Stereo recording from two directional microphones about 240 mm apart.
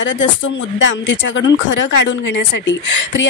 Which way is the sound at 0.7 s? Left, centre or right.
Left.